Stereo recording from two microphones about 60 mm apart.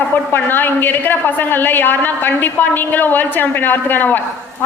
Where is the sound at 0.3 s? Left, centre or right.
Left.